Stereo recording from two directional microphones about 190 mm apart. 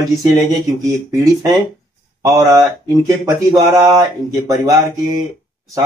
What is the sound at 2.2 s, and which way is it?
Speech, 15° right (ahead or behind).